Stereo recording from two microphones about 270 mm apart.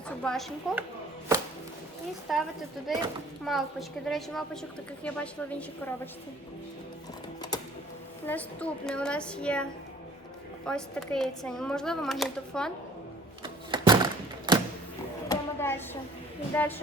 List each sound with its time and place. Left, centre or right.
0.1 s speech: centre
2.3 s speech: centre
8.3 s speech: centre
10.7 s speech: centre
13.4 s thunk: centre
14.5 s a sound: centre
15.3 s a sound: centre
16.6 s speech: centre